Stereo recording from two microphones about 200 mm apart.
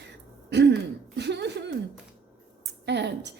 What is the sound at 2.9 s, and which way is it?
Speech, 60° right (ahead or behind).